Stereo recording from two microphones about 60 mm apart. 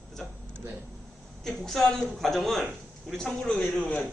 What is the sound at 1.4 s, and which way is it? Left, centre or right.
A woman's voice, centre.